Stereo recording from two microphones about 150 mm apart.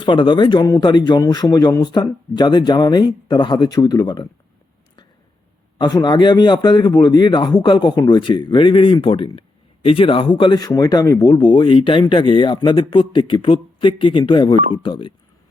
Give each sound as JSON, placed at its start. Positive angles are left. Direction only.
{"t": 0.0, "sound": "speech", "side_deg": 30}
{"t": 5.7, "sound": "speech", "side_deg": 30}